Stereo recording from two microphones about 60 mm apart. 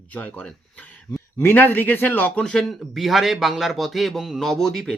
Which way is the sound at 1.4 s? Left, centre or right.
Left.